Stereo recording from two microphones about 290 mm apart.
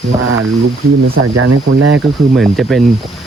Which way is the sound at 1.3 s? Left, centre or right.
Right.